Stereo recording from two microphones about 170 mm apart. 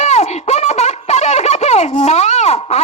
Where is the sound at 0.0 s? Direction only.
40° left (ahead or behind).